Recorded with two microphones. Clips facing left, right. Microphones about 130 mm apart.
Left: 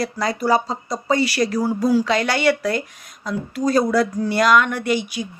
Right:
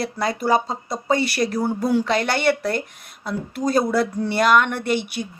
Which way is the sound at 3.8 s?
45° left (ahead or behind).